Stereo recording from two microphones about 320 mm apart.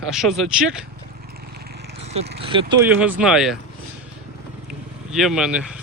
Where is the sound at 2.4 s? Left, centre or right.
Centre.